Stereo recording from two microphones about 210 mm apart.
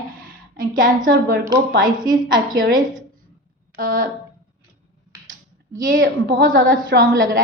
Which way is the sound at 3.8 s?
40° right (ahead or behind).